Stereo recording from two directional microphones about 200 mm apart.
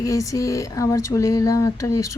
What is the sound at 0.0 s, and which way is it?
Speech, 15° left (ahead or behind).